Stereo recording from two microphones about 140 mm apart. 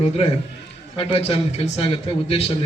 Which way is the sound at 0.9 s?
40° left (ahead or behind).